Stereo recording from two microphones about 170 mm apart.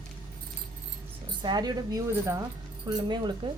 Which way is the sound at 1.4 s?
25° right (ahead or behind).